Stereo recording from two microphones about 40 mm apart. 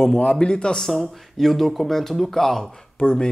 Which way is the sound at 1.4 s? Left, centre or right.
Centre.